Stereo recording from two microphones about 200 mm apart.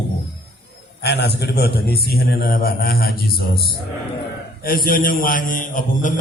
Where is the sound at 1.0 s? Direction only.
55° left (ahead or behind).